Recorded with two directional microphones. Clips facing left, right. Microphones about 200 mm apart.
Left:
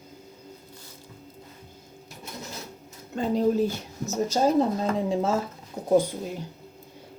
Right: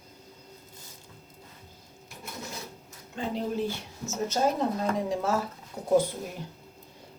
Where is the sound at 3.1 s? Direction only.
40° left (ahead or behind).